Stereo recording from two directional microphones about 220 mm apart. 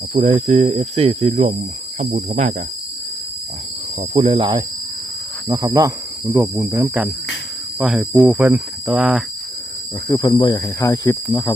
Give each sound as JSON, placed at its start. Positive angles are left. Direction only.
{"t": 0.1, "sound": "speech", "side_deg": -25}
{"t": 4.1, "sound": "speech", "side_deg": -25}
{"t": 10.1, "sound": "speech", "side_deg": 20}